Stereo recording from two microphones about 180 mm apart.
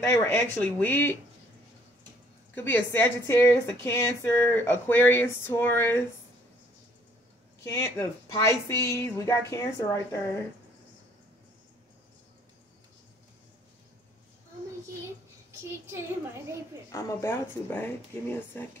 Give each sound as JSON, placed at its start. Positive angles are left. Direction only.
{"t": 0.0, "sound": "a woman's voice", "side_deg": 15}
{"t": 2.5, "sound": "a woman's voice", "side_deg": 10}
{"t": 7.6, "sound": "a woman's voice", "side_deg": 15}
{"t": 15.9, "sound": "a woman's voice", "side_deg": -15}
{"t": 16.9, "sound": "a woman's voice", "side_deg": 15}